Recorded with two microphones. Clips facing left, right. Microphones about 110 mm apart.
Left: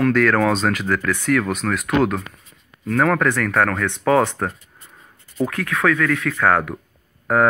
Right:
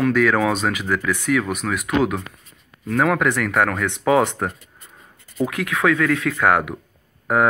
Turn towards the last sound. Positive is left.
turn(degrees=-10)  # may be behind; listen again after turning